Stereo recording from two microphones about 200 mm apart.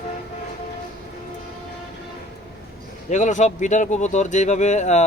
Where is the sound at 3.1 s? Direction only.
35° left (ahead or behind).